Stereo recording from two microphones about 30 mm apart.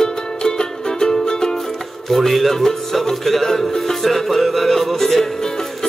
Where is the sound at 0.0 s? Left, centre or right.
Left.